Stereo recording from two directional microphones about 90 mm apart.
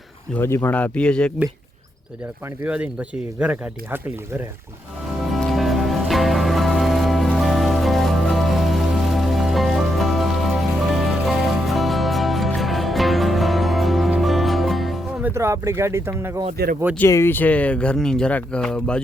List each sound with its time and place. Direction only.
0.3 s speech: 25° left (ahead or behind)
2.6 s speech: 15° right (ahead or behind)
5.3 s music: centre (ahead or behind)
15.2 s speech: 30° right (ahead or behind)
17.1 s speech: 30° left (ahead or behind); by 19.0 s 10° left (ahead or behind)